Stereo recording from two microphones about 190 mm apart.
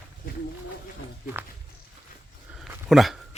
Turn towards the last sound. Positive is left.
turn(degrees=0)  # may be behind; listen again after turning